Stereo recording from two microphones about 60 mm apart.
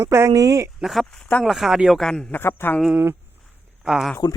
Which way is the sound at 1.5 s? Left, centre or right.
Centre.